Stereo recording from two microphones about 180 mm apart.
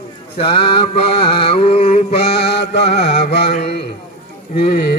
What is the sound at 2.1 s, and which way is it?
Mantra, 65° left (ahead or behind).